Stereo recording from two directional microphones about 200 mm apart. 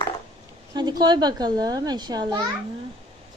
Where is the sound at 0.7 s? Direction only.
20° right (ahead or behind).